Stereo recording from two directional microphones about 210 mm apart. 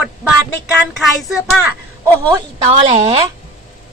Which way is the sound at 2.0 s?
20° right (ahead or behind).